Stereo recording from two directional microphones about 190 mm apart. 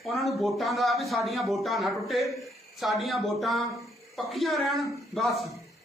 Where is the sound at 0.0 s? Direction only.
Centre (ahead or behind).